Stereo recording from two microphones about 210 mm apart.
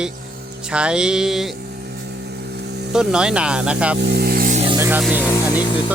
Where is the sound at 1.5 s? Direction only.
50° right (ahead or behind).